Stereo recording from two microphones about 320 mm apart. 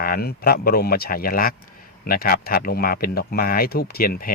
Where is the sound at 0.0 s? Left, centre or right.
Left.